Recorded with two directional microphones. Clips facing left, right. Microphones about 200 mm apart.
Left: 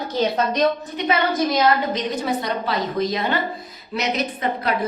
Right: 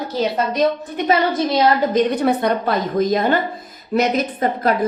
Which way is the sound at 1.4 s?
30° right (ahead or behind).